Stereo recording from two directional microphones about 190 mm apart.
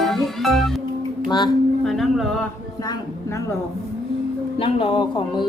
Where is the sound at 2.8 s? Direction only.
20° left (ahead or behind).